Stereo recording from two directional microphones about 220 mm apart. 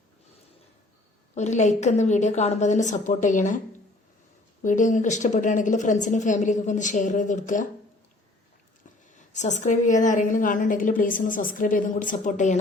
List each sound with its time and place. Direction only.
1.4 s a woman's voice: 30° left (ahead or behind)
4.6 s a woman's voice: 35° left (ahead or behind)
9.1 s a woman's voice: 30° left (ahead or behind)